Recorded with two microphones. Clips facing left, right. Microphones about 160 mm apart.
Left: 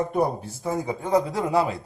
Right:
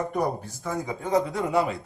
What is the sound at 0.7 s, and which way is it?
Speech, 30° left (ahead or behind).